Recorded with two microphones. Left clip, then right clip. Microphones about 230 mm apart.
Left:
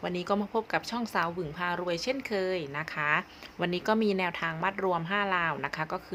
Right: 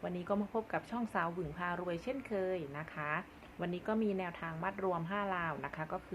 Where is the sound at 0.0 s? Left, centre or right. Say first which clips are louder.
Left 7 dB; left.